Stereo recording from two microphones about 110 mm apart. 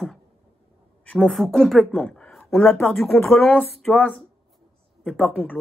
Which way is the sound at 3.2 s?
20° left (ahead or behind).